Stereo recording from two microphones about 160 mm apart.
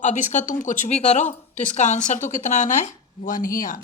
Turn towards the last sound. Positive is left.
turn(degrees=60)  # may be behind; listen again after turning